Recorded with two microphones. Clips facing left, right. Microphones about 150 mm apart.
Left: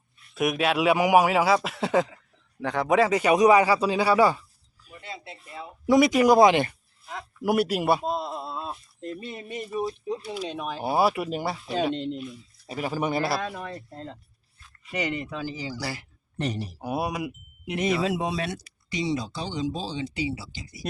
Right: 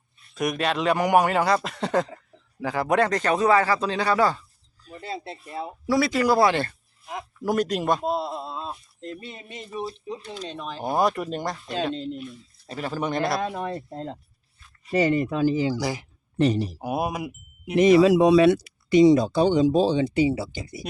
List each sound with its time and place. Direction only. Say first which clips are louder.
0.3 s a man's voice: left 1 dB; 5° left (ahead or behind)
4.9 s speech: right 7 dB; 35° right (ahead or behind)
5.8 s speech: left 3 dB; 15° left (ahead or behind)
8.0 s speech: right 2 dB; 5° right (ahead or behind)
13.5 s speech: right 6 dB; 30° right (ahead or behind)
15.2 s speech: right 11 dB; 45° right (ahead or behind)
15.8 s speech: right 6 dB; 15° right (ahead or behind)
16.4 s speech: right 8 dB; 90° right
16.7 s speech: right 2 dB; 10° right (ahead or behind)
17.7 s speech: right 10 dB; 85° right; by 20.8 s 55° right (ahead or behind)